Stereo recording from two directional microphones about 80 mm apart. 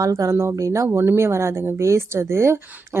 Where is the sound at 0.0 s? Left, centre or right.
Right.